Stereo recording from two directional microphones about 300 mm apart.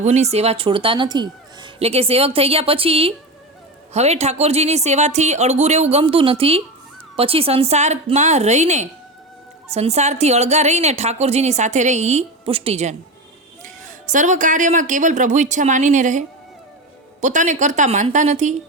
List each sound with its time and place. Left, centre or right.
0.0 s a woman's voice: right